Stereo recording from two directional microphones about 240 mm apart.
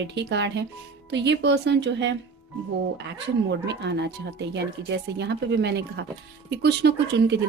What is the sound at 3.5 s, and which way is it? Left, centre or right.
A woman's voice, right.